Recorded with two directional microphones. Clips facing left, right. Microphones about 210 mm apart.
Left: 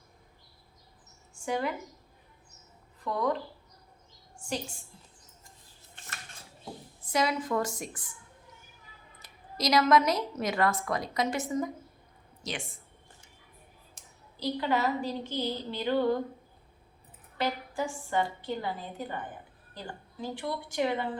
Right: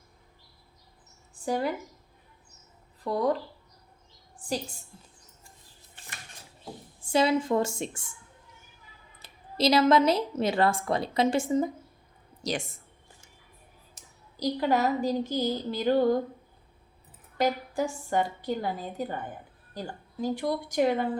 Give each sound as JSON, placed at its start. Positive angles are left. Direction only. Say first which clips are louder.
{"t": 1.5, "sound": "a woman's voice", "louder": "right 3 dB", "side_deg": -35}
{"t": 3.0, "sound": "a woman's voice", "louder": "right 3 dB", "side_deg": -35}
{"t": 7.0, "sound": "a woman's voice", "louder": "right 5 dB", "side_deg": -30}
{"t": 9.1, "sound": "a woman's voice", "louder": "right 6 dB", "side_deg": -30}
{"t": 14.3, "sound": "a woman's voice", "louder": "right 4 dB", "side_deg": -40}
{"t": 17.3, "sound": "a woman's voice", "louder": "right 5 dB", "side_deg": -40}
{"t": 20.2, "sound": "a woman's voice", "louder": "right 6 dB", "side_deg": -40}